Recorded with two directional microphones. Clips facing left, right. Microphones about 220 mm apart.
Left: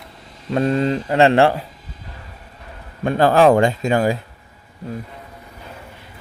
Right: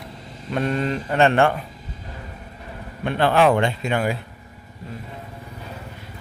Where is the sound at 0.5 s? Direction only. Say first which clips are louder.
Left 5 dB; 30° left (ahead or behind).